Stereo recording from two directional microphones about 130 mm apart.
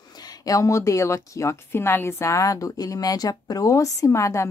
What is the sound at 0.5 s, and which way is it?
A woman's voice, 25° left (ahead or behind).